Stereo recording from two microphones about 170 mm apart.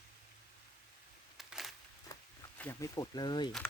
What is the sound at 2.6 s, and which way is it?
Speech, 15° left (ahead or behind).